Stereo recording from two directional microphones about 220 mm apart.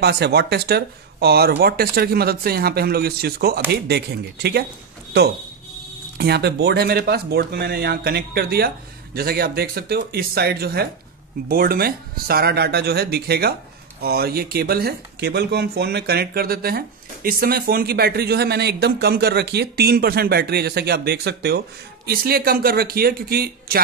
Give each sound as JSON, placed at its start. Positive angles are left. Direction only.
{"t": 0.0, "sound": "speech", "side_deg": -45}
{"t": 6.1, "sound": "speech", "side_deg": -45}